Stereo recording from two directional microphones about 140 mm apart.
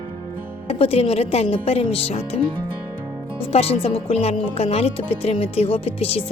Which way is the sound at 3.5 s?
45° left (ahead or behind).